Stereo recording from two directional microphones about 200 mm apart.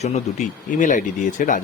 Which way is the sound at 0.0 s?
35° left (ahead or behind).